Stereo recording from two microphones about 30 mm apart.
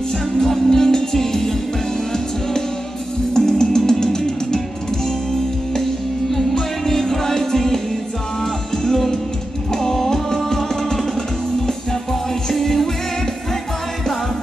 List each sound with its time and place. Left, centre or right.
0.4 s music: centre
3.3 s music: centre
6.3 s music: centre
8.8 s music: centre